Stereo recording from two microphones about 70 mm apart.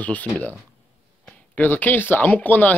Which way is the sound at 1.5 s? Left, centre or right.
Left.